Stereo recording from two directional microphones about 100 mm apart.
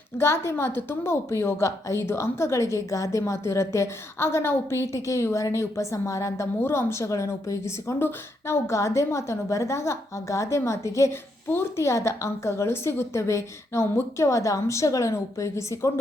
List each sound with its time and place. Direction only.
0.2 s a woman's voice: 25° left (ahead or behind)